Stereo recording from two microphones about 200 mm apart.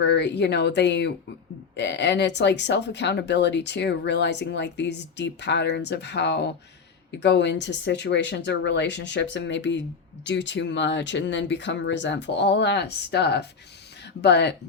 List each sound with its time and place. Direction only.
0.0 s speech: 60° left (ahead or behind)